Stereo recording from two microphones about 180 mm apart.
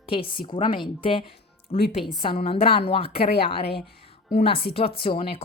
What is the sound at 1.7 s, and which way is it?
Speech, 45° left (ahead or behind).